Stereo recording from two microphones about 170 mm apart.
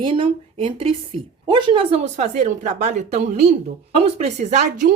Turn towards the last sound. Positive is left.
turn(degrees=-45)  # may be behind; listen again after turning